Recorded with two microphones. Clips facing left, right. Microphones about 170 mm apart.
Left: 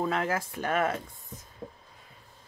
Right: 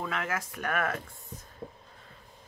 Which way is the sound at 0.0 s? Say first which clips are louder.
Left 5 dB; 35° left (ahead or behind).